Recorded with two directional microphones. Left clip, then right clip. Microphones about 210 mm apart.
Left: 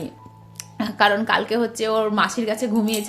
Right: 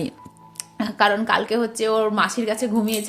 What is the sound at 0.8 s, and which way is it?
A woman's voice, 5° right (ahead or behind).